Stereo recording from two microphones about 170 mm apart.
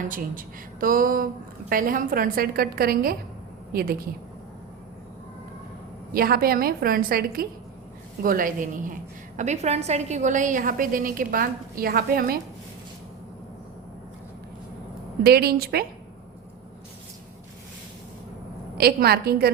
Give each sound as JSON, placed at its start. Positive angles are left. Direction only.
{"t": 0.1, "sound": "a woman's voice", "side_deg": -55}
{"t": 6.1, "sound": "a woman's voice", "side_deg": -60}
{"t": 9.4, "sound": "a woman's voice", "side_deg": -40}
{"t": 15.2, "sound": "a woman's voice", "side_deg": -65}
{"t": 18.8, "sound": "a woman's voice", "side_deg": -65}